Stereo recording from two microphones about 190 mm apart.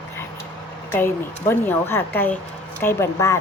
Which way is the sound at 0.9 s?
10° left (ahead or behind).